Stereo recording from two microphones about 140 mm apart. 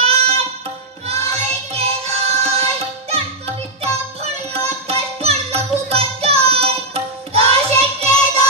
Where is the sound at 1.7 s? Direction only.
50° right (ahead or behind).